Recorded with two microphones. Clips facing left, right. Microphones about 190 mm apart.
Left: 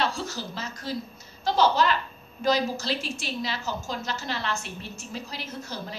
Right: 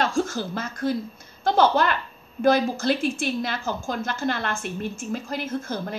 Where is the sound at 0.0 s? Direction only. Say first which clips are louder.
Right 5 dB; 50° right (ahead or behind).